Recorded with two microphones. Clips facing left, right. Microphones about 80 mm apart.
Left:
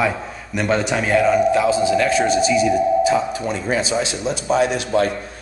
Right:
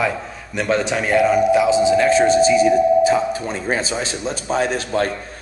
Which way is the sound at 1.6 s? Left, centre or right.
Right.